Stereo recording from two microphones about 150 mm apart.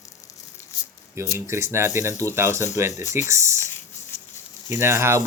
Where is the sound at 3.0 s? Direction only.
55° left (ahead or behind).